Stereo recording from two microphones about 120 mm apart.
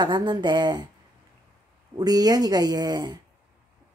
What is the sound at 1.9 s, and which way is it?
A woman's voice, 30° right (ahead or behind).